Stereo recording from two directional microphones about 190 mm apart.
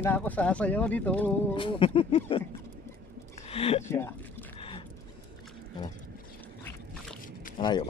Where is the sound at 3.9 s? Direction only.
10° left (ahead or behind).